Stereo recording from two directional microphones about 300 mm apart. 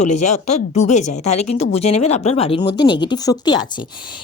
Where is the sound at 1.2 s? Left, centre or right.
Left.